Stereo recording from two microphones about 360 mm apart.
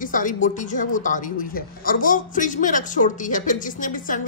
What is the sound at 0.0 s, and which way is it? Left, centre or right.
A woman's voice, left.